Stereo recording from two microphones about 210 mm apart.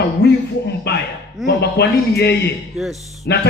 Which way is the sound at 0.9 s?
50° left (ahead or behind).